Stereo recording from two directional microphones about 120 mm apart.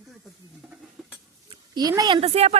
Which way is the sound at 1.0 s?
Centre (ahead or behind).